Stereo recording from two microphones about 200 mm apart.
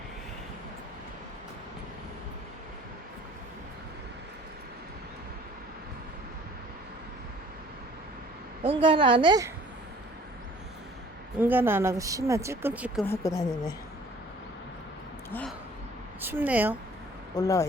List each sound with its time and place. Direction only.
8.6 s a woman's voice: 25° right (ahead or behind)
11.3 s a woman's voice: 10° right (ahead or behind)
13.1 s speech: 15° left (ahead or behind)
15.3 s a sound: 5° left (ahead or behind)
16.2 s a woman's voice: 10° right (ahead or behind)
17.3 s speech: 15° left (ahead or behind)